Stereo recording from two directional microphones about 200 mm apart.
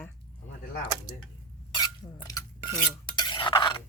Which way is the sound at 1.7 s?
20° left (ahead or behind).